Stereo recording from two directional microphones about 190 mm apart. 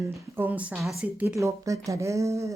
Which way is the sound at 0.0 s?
15° right (ahead or behind).